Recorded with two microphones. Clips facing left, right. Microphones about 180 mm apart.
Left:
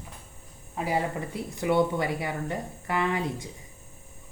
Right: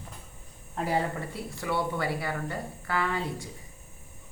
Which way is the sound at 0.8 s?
5° left (ahead or behind).